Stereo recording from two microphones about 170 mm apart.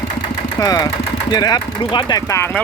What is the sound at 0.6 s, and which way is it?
Speech, 25° left (ahead or behind).